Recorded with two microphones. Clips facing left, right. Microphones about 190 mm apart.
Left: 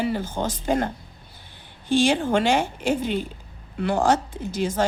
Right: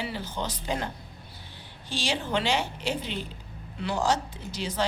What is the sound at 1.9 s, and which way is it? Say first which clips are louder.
A woman's voice: left 10 dB; 50° left (ahead or behind).